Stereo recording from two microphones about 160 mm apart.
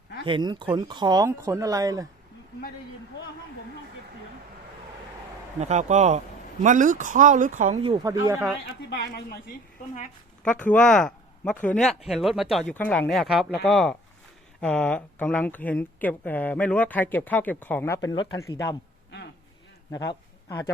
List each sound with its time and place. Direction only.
0.3 s speech: 30° right (ahead or behind)
5.5 s speech: 45° right (ahead or behind)
8.0 s speech: 20° right (ahead or behind)
8.6 s speech: 85° left
10.4 s speech: 5° left (ahead or behind)